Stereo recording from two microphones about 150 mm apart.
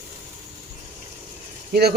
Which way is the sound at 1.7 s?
90° right.